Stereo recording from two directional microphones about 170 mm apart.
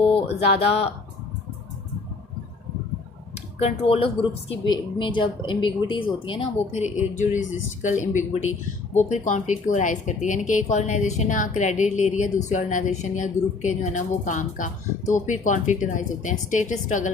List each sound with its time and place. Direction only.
0.1 s speech: 35° left (ahead or behind)
3.3 s speech: 40° left (ahead or behind)
6.8 s a woman's voice: 45° left (ahead or behind)